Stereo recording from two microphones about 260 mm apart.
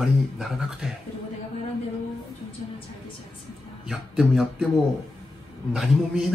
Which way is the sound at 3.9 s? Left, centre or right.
Centre.